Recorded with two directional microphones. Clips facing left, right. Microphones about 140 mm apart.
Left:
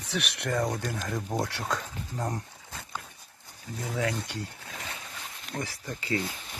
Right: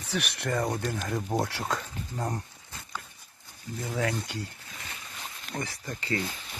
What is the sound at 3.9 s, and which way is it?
Speech, centre (ahead or behind).